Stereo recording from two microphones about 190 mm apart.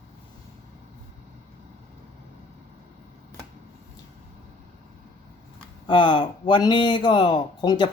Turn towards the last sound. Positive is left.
turn(degrees=25)  # may be behind; listen again after turning